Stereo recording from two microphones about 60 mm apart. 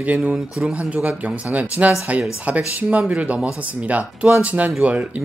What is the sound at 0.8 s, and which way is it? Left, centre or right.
Speech, right.